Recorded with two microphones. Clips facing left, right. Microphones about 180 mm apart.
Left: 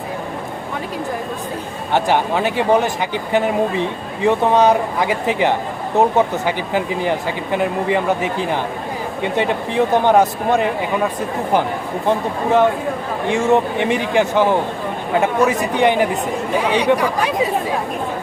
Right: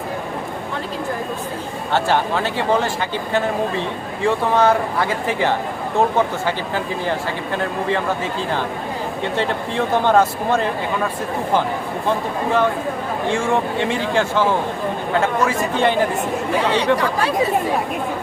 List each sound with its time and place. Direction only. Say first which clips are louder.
1.9 s speech: left 2 dB; 15° left (ahead or behind)
12.0 s speech: left 3 dB; 20° left (ahead or behind)